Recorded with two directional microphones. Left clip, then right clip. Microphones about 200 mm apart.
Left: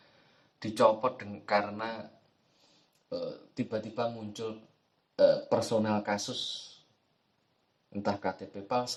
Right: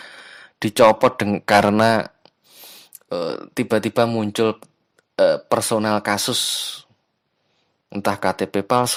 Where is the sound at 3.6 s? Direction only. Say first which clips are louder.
Right 16 dB; 50° right (ahead or behind).